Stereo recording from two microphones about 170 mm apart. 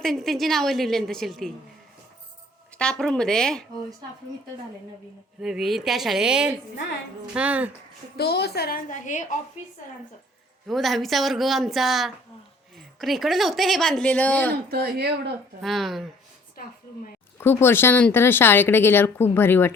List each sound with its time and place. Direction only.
0.0 s speech: centre (ahead or behind)
2.7 s speech: 5° left (ahead or behind)
5.4 s speech: centre (ahead or behind)
8.1 s a woman's voice: 70° left (ahead or behind); by 9.2 s 50° left (ahead or behind)
10.7 s speech: centre (ahead or behind)
14.7 s speech: 70° right (ahead or behind)
15.6 s speech: centre (ahead or behind)
17.3 s speech: 15° left (ahead or behind)